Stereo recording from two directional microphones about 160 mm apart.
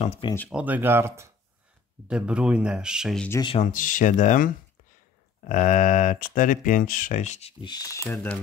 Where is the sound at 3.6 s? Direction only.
55° left (ahead or behind).